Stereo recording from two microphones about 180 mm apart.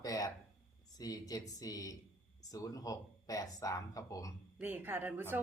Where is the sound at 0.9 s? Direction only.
20° left (ahead or behind).